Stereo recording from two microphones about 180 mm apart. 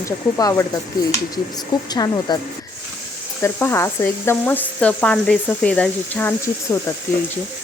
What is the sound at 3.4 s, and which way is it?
Speech, 15° left (ahead or behind).